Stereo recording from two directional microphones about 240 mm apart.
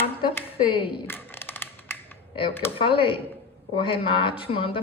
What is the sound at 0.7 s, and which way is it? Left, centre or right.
Speech, left.